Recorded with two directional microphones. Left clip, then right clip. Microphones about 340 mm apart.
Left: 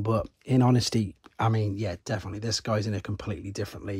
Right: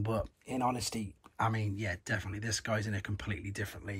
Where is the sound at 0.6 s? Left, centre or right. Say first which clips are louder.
Left 7 dB; left.